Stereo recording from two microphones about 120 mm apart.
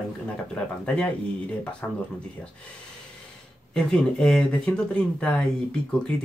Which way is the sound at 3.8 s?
5° left (ahead or behind).